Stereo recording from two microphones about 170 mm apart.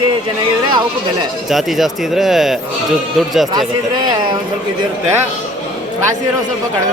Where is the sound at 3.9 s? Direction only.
25° right (ahead or behind).